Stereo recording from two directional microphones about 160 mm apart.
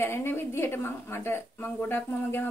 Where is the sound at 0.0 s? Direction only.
15° left (ahead or behind).